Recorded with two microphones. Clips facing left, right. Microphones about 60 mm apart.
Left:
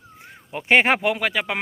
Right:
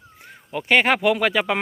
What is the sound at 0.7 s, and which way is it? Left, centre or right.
Speech, centre.